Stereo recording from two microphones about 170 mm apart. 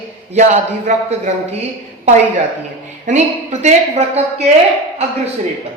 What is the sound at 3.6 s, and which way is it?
Speech, 40° right (ahead or behind).